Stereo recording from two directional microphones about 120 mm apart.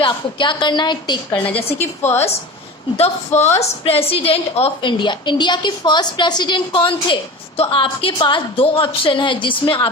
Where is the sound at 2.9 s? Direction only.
55° left (ahead or behind).